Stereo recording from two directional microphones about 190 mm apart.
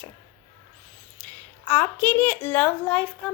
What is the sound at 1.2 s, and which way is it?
A woman's voice, 10° left (ahead or behind).